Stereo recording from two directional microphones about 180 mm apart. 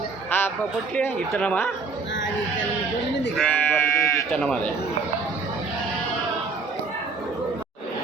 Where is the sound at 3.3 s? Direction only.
5° left (ahead or behind).